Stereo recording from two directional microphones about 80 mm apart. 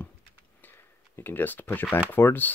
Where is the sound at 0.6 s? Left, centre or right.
Left.